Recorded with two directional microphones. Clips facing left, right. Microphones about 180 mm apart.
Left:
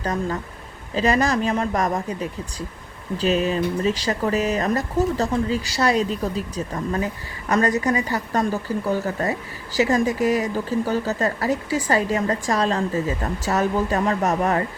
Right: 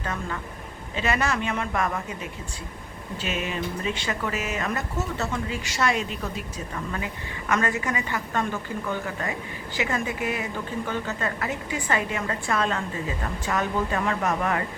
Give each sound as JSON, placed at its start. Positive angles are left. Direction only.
{"t": 0.0, "sound": "speech", "side_deg": 40}